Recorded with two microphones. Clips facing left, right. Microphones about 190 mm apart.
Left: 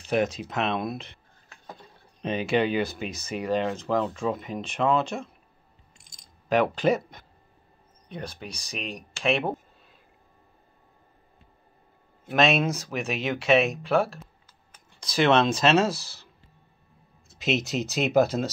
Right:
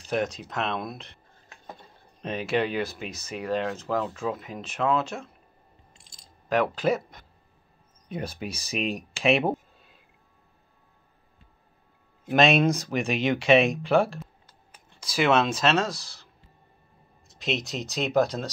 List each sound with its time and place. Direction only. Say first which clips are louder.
0.0 s speech: left 3 dB; centre (ahead or behind)
5.9 s coin: right 2 dB; 25° right (ahead or behind)
6.5 s speech: left 2 dB; centre (ahead or behind)
12.3 s speech: right 2 dB; centre (ahead or behind)
17.4 s speech: left 4 dB; centre (ahead or behind)